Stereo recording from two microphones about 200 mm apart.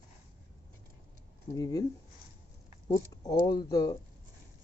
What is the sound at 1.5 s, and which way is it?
Speech, 20° left (ahead or behind).